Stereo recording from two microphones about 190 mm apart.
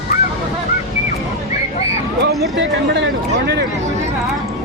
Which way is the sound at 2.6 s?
65° right (ahead or behind).